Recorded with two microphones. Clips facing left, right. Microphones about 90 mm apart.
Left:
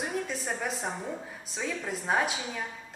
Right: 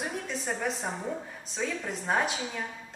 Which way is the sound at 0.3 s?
Centre (ahead or behind).